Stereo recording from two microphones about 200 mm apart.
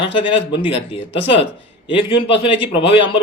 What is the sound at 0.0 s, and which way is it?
A man's voice, 25° left (ahead or behind).